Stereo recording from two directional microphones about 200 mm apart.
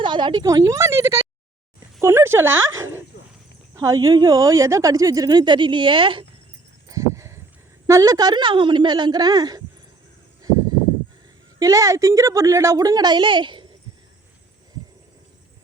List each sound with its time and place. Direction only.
0.0 s a woman's voice: 25° right (ahead or behind)
2.7 s dog: 10° right (ahead or behind)
3.8 s a woman's voice: 15° right (ahead or behind)
6.8 s a sound: 15° right (ahead or behind)
7.9 s a woman's voice: 15° right (ahead or behind)
11.6 s a woman's voice: 15° right (ahead or behind)